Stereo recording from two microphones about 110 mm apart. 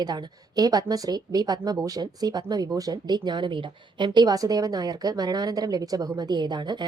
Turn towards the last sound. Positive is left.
turn(degrees=-40)  # may be behind; listen again after turning